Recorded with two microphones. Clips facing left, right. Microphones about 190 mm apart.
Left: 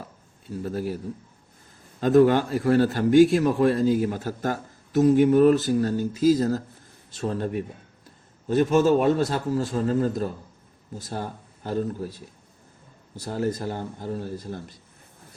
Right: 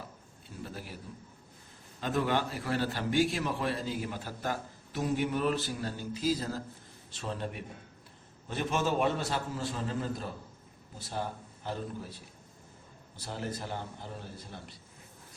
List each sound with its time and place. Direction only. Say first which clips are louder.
0.6 s a man's voice: left 14 dB; 40° left (ahead or behind)
2.0 s a man's voice: left 13 dB; 45° left (ahead or behind)
13.1 s a man's voice: left 11 dB; 40° left (ahead or behind)